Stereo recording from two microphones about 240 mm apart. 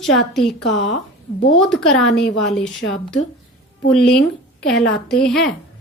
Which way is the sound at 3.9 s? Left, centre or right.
Centre.